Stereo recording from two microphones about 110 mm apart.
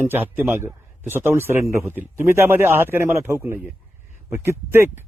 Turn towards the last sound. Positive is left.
turn(degrees=-25)  # may be behind; listen again after turning